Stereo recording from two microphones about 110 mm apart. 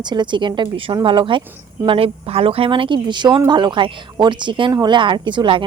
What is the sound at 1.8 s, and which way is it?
Speech, 60° right (ahead or behind).